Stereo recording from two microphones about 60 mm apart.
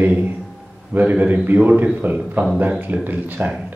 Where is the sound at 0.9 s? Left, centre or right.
Right.